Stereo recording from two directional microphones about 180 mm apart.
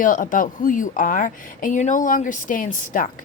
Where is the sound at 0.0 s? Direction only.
45° left (ahead or behind).